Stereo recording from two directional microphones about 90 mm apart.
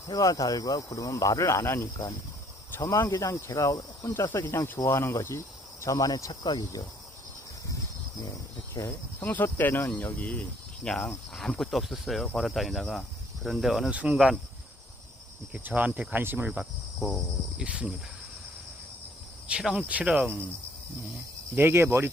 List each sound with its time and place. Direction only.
0.1 s speech: 40° left (ahead or behind)
2.9 s speech: 35° left (ahead or behind)
4.0 s speech: 25° left (ahead or behind); by 6.5 s 40° left (ahead or behind)
6.5 s cricket: 45° left (ahead or behind)
8.8 s speech: 40° left (ahead or behind)
9.2 s speech: 20° left (ahead or behind); by 13.9 s 5° right (ahead or behind)
13.9 s speech: 15° right (ahead or behind)
15.5 s cricket: 15° right (ahead or behind)
17.0 s speech: 5° left (ahead or behind)
17.6 s speech: 10° right (ahead or behind)
19.5 s speech: 10° right (ahead or behind)
21.5 s cricket: 25° right (ahead or behind)